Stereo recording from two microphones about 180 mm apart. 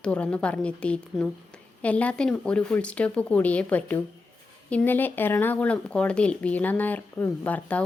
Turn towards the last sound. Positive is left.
turn(degrees=10)  # may be behind; listen again after turning